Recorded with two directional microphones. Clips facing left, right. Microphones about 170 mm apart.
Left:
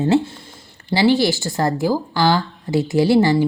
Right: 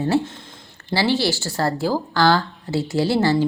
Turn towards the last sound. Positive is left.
turn(degrees=15)  # may be behind; listen again after turning